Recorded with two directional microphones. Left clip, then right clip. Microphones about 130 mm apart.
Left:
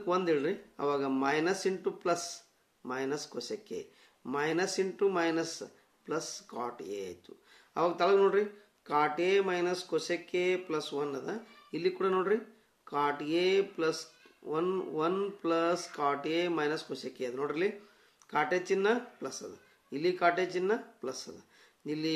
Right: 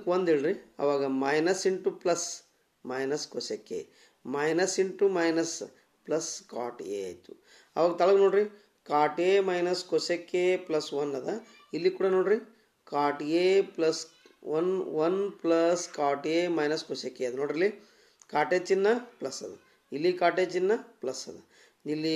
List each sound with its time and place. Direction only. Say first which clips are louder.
0.0 s speech: right 4 dB; 30° right (ahead or behind)